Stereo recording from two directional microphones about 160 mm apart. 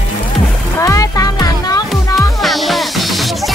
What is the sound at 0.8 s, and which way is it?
Music, 20° left (ahead or behind).